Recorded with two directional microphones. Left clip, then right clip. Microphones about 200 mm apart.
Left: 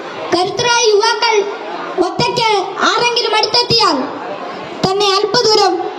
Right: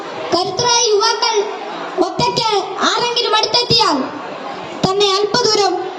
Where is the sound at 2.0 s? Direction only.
Centre (ahead or behind).